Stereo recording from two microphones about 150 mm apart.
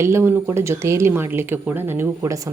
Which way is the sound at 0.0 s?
15° right (ahead or behind).